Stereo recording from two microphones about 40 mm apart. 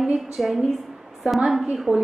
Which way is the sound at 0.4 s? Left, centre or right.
Centre.